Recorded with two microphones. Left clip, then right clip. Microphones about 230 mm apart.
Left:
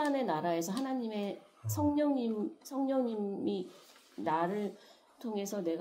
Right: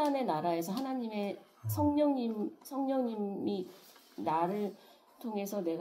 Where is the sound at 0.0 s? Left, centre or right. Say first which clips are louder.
Right 1 dB; left.